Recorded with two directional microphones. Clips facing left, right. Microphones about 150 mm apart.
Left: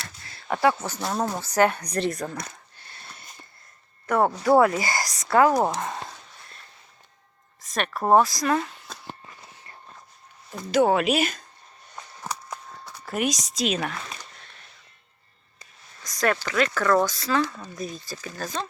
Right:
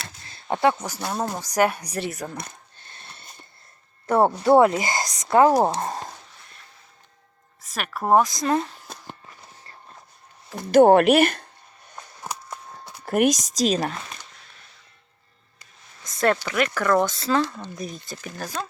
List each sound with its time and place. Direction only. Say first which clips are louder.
0.3 s a sound: right 1 dB; 25° right (ahead or behind)
0.9 s speech: left 1 dB; 10° right (ahead or behind)
4.0 s speech: right 3 dB; 30° right (ahead or behind)
7.6 s speech: left 2 dB; 5° right (ahead or behind)
8.2 s speech: right 1 dB; 20° right (ahead or behind)
10.7 s speech: right 7 dB; 55° right (ahead or behind)
13.1 s a woman's voice: right 7 dB; 50° right (ahead or behind)
16.0 s a sound: right 3 dB; 25° right (ahead or behind)
16.4 s speech: even; 10° right (ahead or behind)
18.2 s speech: even; 10° right (ahead or behind)